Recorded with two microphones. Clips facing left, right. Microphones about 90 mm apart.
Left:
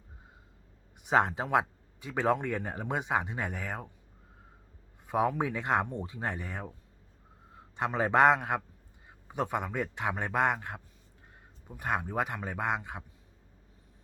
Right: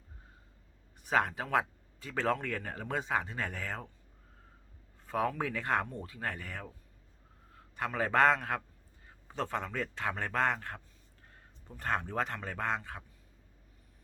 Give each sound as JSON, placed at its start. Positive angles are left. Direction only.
{"t": 1.0, "sound": "speech", "side_deg": 25}
{"t": 5.0, "sound": "a man's voice", "side_deg": 20}